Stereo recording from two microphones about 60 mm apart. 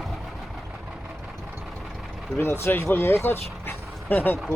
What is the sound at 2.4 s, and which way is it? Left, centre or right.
Speech, left.